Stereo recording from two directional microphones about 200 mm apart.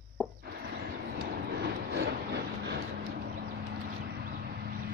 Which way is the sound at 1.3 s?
55° right (ahead or behind).